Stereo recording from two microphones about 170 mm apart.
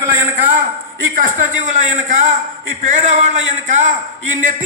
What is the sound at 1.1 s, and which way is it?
A man's voice, 50° right (ahead or behind).